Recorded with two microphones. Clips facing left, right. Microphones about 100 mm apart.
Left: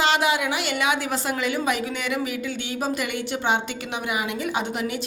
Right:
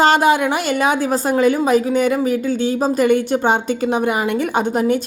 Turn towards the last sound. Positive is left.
turn(degrees=-45)  # may be behind; listen again after turning